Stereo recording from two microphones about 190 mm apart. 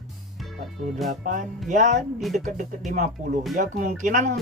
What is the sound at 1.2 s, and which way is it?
Speech, 40° right (ahead or behind).